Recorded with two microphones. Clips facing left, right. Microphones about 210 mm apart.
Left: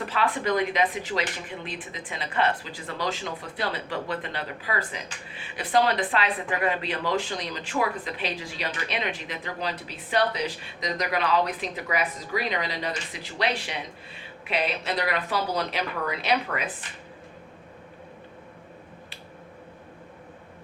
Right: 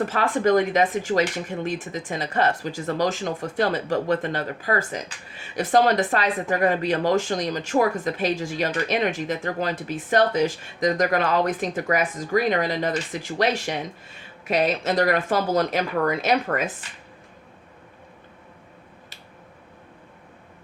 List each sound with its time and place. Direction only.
0.0 s speech: 45° right (ahead or behind)